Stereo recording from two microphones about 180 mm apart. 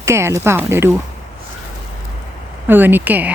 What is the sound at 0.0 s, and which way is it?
Speech, 15° right (ahead or behind).